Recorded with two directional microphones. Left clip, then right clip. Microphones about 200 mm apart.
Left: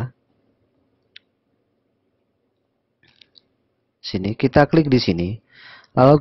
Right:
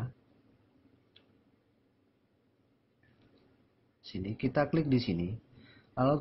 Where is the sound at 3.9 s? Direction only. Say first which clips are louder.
Left 16 dB; 50° left (ahead or behind).